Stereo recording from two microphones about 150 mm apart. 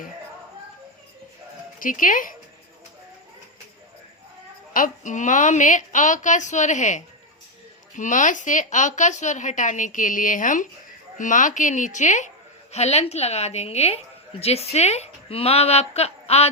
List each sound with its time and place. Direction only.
1.8 s speech: 65° left (ahead or behind)
4.7 s a woman's voice: 60° left (ahead or behind); by 16.5 s 45° left (ahead or behind)